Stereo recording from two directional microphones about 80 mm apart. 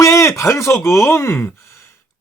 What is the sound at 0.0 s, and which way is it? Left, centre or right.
Speech, left.